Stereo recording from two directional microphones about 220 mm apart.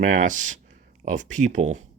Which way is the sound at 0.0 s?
35° right (ahead or behind).